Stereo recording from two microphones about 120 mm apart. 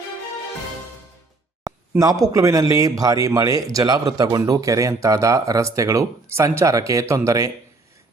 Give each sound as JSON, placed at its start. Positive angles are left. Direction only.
{"t": 2.0, "sound": "speech", "side_deg": -30}